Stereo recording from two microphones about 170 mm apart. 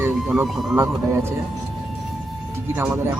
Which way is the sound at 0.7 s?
15° right (ahead or behind).